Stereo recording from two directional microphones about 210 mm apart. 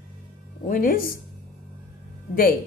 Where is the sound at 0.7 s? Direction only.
40° left (ahead or behind).